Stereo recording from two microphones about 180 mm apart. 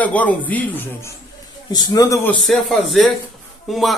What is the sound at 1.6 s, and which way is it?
Speech, 20° left (ahead or behind).